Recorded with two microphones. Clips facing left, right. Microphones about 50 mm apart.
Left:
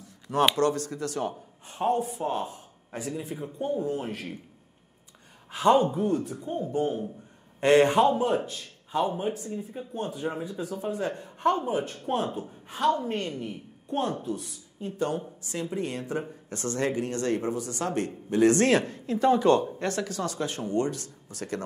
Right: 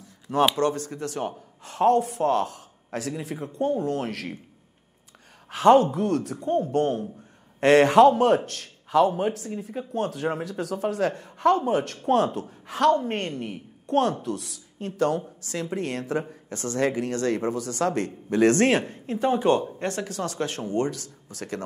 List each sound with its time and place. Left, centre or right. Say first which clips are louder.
0.6 s speech: right 1 dB; right
1.6 s a man's voice: right 6 dB; right
5.5 s speech: right 4 dB; right
13.0 s a woman's voice: right 2 dB; right
18.8 s speech: even; right
20.6 s speech: right 1 dB; right